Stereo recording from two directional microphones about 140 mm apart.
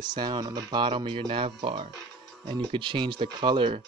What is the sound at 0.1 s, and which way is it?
Speech, 30° right (ahead or behind).